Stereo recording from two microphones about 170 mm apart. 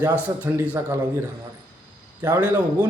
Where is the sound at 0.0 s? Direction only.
10° right (ahead or behind).